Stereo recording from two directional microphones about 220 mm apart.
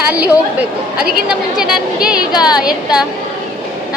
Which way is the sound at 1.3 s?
5° right (ahead or behind).